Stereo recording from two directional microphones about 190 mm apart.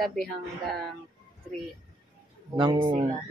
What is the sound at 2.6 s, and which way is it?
Speech, 20° right (ahead or behind).